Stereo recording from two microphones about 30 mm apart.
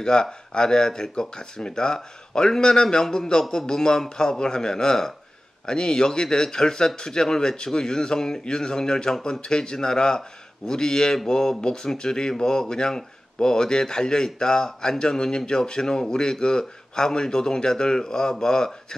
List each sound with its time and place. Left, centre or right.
0.0 s speech: left